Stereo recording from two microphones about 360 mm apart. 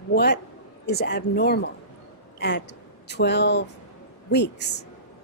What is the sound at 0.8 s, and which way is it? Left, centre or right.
A woman's voice, left.